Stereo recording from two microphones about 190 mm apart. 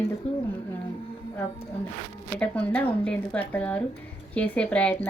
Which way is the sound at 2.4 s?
5° left (ahead or behind).